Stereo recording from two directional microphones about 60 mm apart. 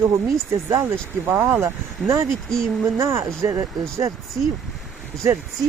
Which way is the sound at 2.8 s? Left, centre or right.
Right.